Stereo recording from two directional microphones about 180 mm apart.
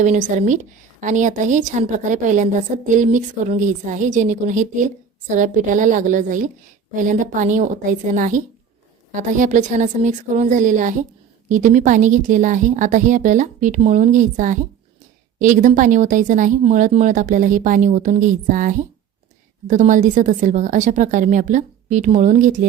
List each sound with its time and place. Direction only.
0.0 s a woman's voice: 40° right (ahead or behind)